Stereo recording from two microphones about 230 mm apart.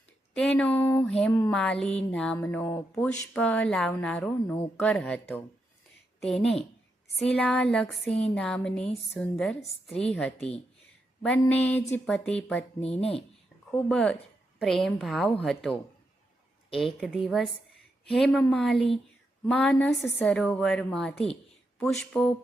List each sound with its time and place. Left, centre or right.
0.3 s a sound: centre
1.5 s speech: centre
11.2 s a sound: centre
12.3 s speech: centre
13.0 s speech: left
13.7 s speech: centre